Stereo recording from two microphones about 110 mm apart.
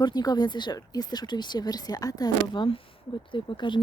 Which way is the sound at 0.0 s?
40° left (ahead or behind).